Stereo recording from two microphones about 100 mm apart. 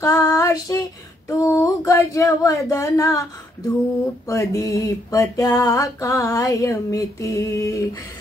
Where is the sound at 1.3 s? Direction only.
30° left (ahead or behind).